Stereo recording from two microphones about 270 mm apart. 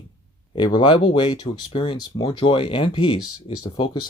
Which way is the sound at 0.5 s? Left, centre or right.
Centre.